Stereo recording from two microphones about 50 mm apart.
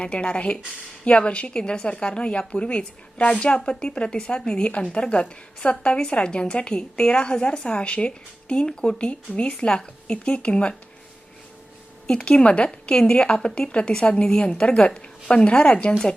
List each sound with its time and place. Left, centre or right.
0.0 s a woman's voice: left
12.0 s a woman's voice: left